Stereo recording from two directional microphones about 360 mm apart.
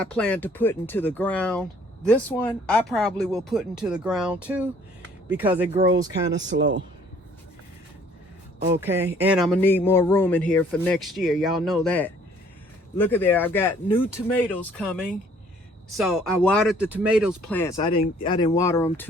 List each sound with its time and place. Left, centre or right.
0.0 s speech: centre
6.3 s speech: right
8.8 s speech: centre